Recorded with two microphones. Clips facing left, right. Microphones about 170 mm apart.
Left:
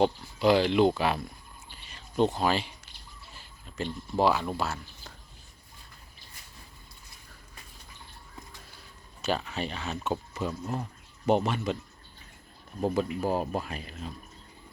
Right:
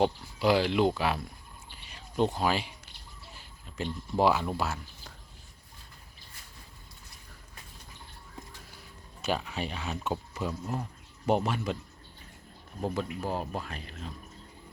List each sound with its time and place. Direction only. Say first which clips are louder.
0.0 s speech: left 2 dB; 5° right (ahead or behind)
1.7 s a sound: left 3 dB; 10° right (ahead or behind)
4.2 s speech: even; 15° right (ahead or behind)
9.2 s speech: left 1 dB; 5° right (ahead or behind)
12.8 s speech: left 5 dB; 10° left (ahead or behind)